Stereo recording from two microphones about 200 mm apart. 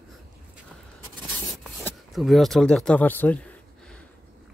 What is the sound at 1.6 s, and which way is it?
Speech, centre (ahead or behind).